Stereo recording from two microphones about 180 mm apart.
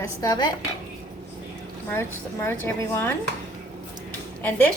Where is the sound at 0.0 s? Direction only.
20° left (ahead or behind).